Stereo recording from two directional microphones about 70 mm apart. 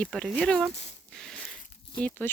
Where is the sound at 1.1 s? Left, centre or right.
Centre.